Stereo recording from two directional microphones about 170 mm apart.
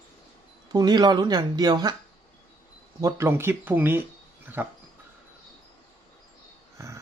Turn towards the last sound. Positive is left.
turn(degrees=-15)  # may be behind; listen again after turning